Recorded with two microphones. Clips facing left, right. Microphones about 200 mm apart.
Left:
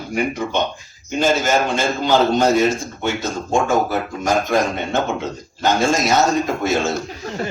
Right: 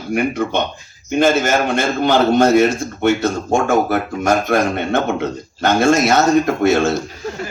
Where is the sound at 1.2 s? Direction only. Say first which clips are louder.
Right 2 dB; 60° right (ahead or behind).